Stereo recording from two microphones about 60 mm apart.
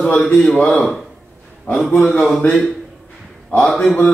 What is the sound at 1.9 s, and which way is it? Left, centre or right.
Speech, left.